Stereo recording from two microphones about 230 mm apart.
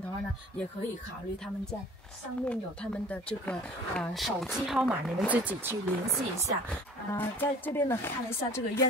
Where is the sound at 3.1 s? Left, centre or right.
Centre.